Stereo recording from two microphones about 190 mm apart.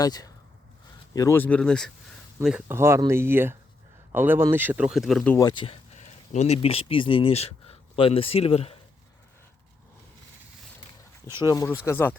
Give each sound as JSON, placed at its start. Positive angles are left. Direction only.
{"t": 0.0, "sound": "speech", "side_deg": 20}
{"t": 5.4, "sound": "speech", "side_deg": 20}
{"t": 11.4, "sound": "speech", "side_deg": 15}